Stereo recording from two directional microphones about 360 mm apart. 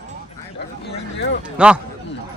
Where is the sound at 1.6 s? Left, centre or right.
Centre.